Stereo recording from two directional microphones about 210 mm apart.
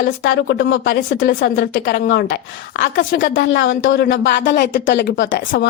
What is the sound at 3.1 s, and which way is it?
Speech, 60° left (ahead or behind).